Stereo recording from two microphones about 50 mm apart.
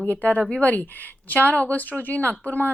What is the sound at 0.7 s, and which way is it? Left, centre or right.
A woman's voice, left.